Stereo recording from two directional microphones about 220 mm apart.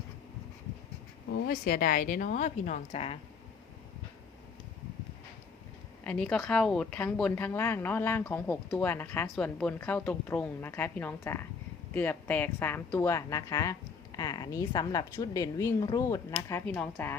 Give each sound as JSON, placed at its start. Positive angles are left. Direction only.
{"t": 1.3, "sound": "a woman's voice", "side_deg": 45}
{"t": 6.1, "sound": "a woman's voice", "side_deg": 5}